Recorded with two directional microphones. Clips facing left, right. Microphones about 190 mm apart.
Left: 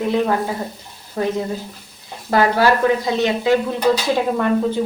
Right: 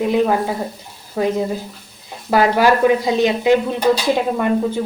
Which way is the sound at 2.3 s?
15° right (ahead or behind).